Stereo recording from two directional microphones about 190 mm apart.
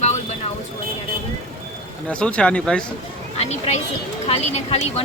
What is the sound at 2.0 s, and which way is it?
Speech, 5° left (ahead or behind).